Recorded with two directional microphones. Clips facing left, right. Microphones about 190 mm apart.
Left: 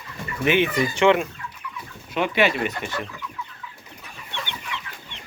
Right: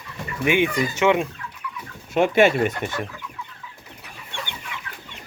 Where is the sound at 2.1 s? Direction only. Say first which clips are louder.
Right 5 dB; 45° right (ahead or behind).